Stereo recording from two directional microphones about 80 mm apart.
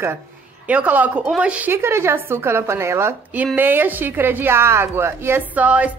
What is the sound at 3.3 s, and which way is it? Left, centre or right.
A woman's voice, right.